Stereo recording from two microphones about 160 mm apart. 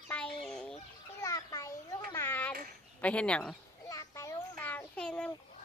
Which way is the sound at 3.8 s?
20° left (ahead or behind).